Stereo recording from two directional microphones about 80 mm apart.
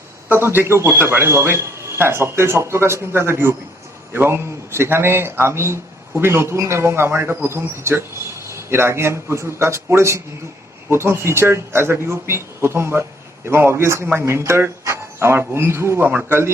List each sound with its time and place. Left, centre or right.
0.3 s a man's voice: right